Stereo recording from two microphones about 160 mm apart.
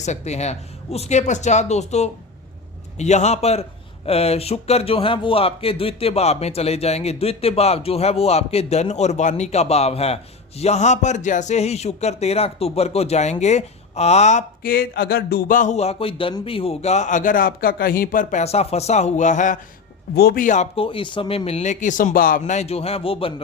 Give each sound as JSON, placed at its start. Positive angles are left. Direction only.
{"t": 0.0, "sound": "a man's voice", "side_deg": 45}
{"t": 20.1, "sound": "speech", "side_deg": 70}
{"t": 20.7, "sound": "a man's voice", "side_deg": 35}